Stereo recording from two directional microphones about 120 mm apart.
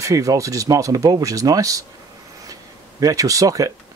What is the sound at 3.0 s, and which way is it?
Speech, 30° right (ahead or behind).